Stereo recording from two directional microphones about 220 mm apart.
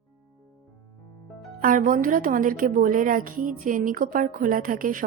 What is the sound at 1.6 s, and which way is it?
A woman's voice, 40° right (ahead or behind).